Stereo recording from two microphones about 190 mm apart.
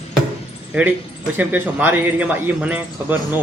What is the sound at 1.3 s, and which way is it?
A man's voice, 10° right (ahead or behind).